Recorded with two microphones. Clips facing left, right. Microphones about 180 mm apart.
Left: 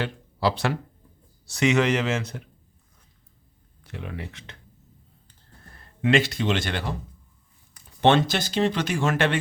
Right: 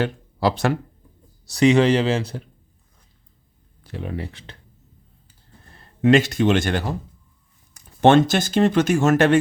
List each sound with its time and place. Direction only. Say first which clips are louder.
0.0 s speech: right 4 dB; 45° right (ahead or behind)
1.5 s speech: right 6 dB; 35° right (ahead or behind)
3.8 s speech: right 6 dB; 35° right (ahead or behind)
6.0 s speech: right 6 dB; 40° right (ahead or behind)